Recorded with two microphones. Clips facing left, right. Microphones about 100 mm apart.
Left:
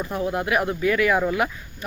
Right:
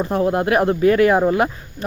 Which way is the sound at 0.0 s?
40° right (ahead or behind).